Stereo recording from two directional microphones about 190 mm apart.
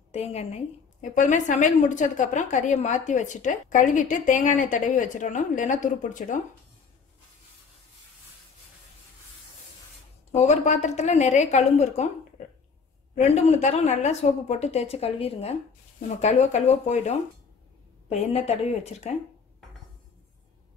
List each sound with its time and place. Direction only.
0.1 s a woman's voice: 35° left (ahead or behind)
10.3 s a woman's voice: 35° left (ahead or behind)